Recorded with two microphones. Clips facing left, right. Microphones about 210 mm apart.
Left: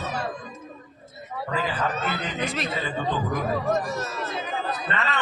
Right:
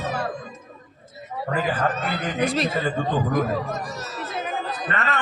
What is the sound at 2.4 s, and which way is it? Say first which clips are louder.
Speech: right 8 dB; 35° right (ahead or behind).